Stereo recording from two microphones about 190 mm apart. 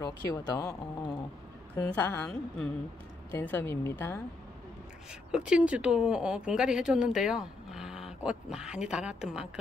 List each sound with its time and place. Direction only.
0.0 s speech: 20° left (ahead or behind)
1.8 s speech: 10° left (ahead or behind)
5.3 s speech: 5° right (ahead or behind)